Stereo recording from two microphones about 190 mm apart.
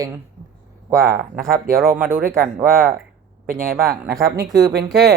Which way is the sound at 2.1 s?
50° right (ahead or behind).